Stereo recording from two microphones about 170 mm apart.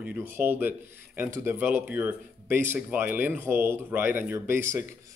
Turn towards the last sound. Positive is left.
turn(degrees=-15)  # may be behind; listen again after turning